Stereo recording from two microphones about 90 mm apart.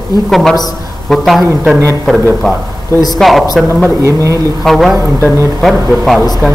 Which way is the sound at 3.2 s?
5° left (ahead or behind).